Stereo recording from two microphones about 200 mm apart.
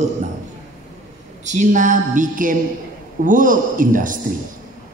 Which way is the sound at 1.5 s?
40° right (ahead or behind).